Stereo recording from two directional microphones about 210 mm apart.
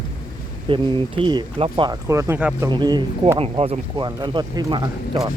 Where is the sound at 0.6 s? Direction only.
20° right (ahead or behind).